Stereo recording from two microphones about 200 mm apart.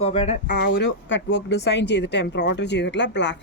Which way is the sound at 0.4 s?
55° left (ahead or behind).